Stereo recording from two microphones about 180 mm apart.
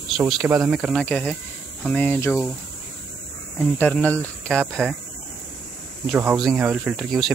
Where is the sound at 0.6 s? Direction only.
Centre (ahead or behind).